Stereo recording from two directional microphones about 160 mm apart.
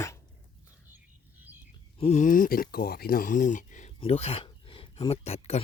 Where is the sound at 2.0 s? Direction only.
45° left (ahead or behind).